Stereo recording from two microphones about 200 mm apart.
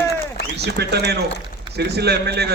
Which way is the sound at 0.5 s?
55° right (ahead or behind).